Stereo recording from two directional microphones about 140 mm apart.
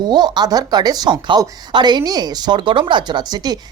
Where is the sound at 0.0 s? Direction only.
30° right (ahead or behind).